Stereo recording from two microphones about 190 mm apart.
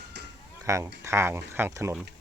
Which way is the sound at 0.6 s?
15° right (ahead or behind).